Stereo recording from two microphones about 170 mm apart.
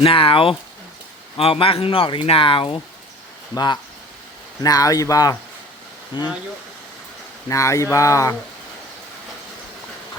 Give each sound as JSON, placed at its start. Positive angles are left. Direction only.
{"t": 0.0, "sound": "speech", "side_deg": 30}
{"t": 7.4, "sound": "speech", "side_deg": 15}